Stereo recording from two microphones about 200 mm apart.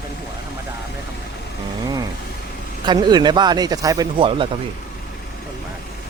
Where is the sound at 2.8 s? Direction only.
20° right (ahead or behind).